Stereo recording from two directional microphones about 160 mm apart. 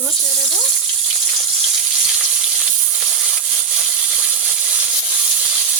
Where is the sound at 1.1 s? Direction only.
Centre (ahead or behind).